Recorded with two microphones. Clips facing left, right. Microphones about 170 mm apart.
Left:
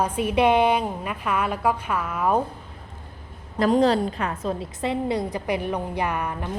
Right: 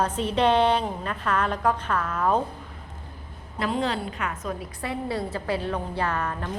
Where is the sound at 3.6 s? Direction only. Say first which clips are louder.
Left 8 dB; 40° left (ahead or behind).